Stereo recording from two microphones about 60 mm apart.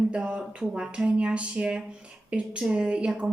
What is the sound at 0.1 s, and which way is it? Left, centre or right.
A woman's voice, centre.